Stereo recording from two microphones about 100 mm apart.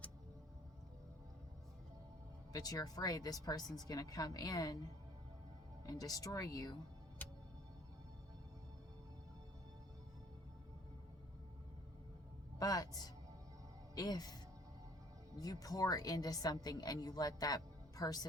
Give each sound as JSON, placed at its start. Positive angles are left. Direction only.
{"t": 2.5, "sound": "a woman's voice", "side_deg": 40}
{"t": 5.8, "sound": "a woman's voice", "side_deg": 40}
{"t": 12.5, "sound": "music", "side_deg": 40}
{"t": 13.9, "sound": "speech", "side_deg": 40}
{"t": 15.6, "sound": "a woman's voice", "side_deg": 40}